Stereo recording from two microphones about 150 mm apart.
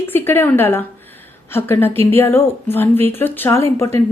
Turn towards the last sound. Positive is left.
turn(degrees=20)  # may be behind; listen again after turning